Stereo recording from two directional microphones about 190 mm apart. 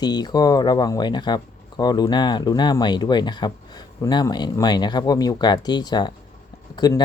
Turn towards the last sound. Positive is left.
turn(degrees=20)  # may be behind; listen again after turning